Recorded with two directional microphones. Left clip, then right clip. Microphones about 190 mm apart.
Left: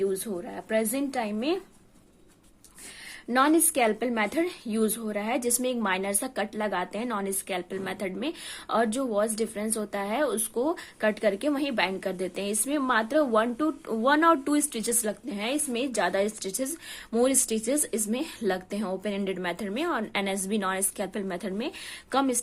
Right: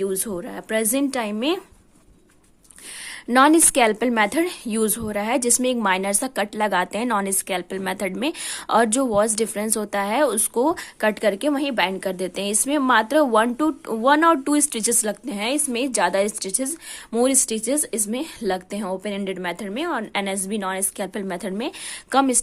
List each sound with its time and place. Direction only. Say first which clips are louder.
0.0 s a woman's voice: right 3 dB; 40° right (ahead or behind)
3.2 s a woman's voice: right 7 dB; 40° right (ahead or behind)